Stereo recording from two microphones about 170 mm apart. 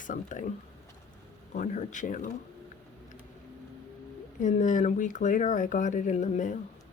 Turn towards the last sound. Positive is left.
turn(degrees=45)  # may be behind; listen again after turning